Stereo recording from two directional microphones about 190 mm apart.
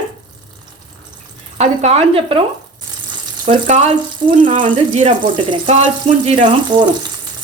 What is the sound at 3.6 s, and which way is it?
Speech, 35° right (ahead or behind).